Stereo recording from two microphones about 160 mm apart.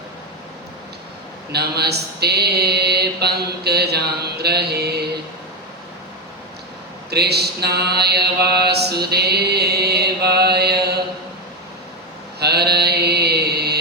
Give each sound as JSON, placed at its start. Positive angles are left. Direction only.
{"t": 1.5, "sound": "mantra", "side_deg": -90}
{"t": 7.1, "sound": "mantra", "side_deg": -90}
{"t": 12.4, "sound": "mantra", "side_deg": -90}